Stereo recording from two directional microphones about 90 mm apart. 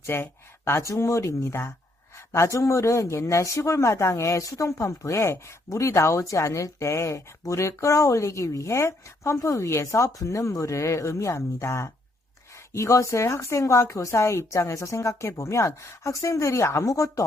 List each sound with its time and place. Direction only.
0.0 s speech: 25° left (ahead or behind)